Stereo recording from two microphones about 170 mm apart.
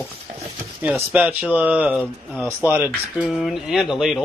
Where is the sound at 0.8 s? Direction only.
10° right (ahead or behind).